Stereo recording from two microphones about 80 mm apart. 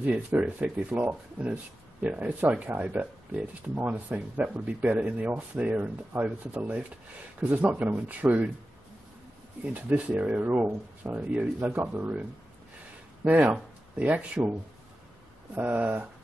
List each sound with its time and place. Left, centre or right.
0.0 s speech: centre
9.8 s speech: centre
15.5 s speech: centre